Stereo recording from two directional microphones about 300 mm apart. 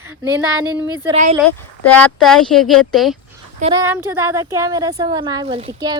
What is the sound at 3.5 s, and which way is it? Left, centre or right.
A woman's voice, centre.